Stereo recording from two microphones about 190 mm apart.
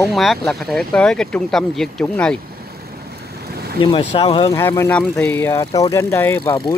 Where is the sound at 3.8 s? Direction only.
25° left (ahead or behind).